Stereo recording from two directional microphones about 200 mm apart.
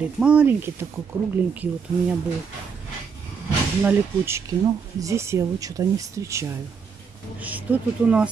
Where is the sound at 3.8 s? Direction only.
15° right (ahead or behind).